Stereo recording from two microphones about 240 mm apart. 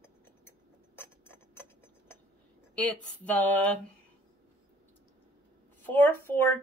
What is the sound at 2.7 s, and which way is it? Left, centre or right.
Speech, centre.